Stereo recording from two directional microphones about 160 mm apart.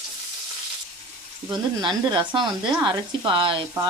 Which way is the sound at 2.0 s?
30° right (ahead or behind).